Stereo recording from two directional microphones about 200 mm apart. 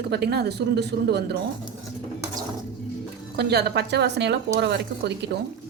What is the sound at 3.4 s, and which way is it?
A woman's voice, 55° right (ahead or behind).